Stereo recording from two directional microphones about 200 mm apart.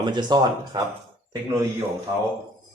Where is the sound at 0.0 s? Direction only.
20° right (ahead or behind).